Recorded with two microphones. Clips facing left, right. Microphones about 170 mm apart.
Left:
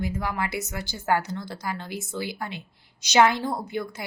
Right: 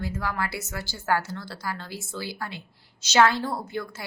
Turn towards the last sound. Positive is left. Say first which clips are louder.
# left 2 dB
turn(degrees=15)  # may be behind; listen again after turning